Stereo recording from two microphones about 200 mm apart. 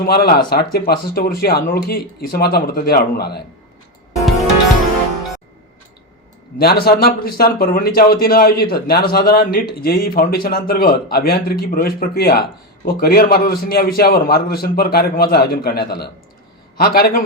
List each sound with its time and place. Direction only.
0.0 s a man's voice: 50° left (ahead or behind)
6.6 s a man's voice: 50° left (ahead or behind)